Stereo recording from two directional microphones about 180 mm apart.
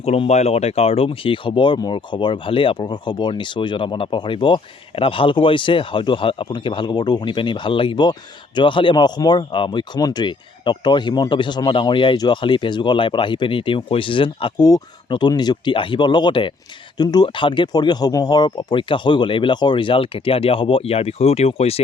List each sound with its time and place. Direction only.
0.0 s speech: 35° left (ahead or behind)